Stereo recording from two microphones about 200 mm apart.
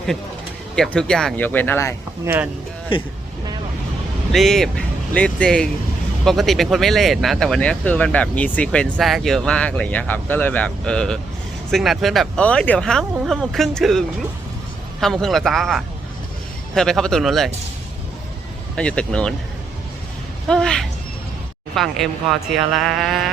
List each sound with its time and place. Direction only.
0.8 s speech: 5° left (ahead or behind)
2.2 s speech: 10° right (ahead or behind)
2.9 s speech: 25° left (ahead or behind)
4.3 s speech: centre (ahead or behind)
15.0 s speech: centre (ahead or behind)
18.8 s speech: 5° left (ahead or behind)
20.5 s speech: 5° left (ahead or behind)